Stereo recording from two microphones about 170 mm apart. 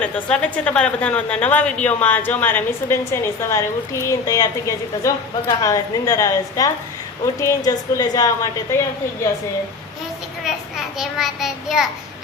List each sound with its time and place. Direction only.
0.0 s a woman's voice: 10° left (ahead or behind)
10.9 s a child's voice: centre (ahead or behind)